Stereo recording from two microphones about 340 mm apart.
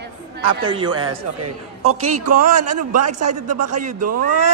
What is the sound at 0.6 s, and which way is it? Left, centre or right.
Speech, centre.